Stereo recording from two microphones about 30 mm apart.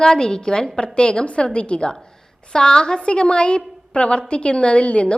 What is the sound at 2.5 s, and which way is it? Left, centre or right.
A woman's voice, left.